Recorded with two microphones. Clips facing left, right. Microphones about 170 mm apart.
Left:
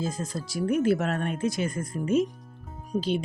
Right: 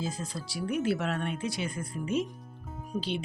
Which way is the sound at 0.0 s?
45° left (ahead or behind).